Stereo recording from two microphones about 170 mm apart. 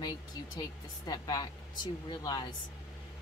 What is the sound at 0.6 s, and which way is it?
A woman's voice, 25° left (ahead or behind).